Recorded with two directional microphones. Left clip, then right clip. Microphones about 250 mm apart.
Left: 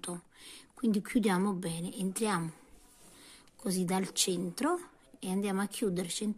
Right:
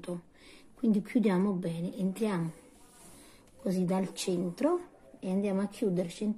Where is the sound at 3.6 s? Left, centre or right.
Left.